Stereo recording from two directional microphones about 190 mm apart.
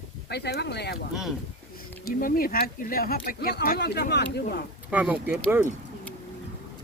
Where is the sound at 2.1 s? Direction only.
50° left (ahead or behind).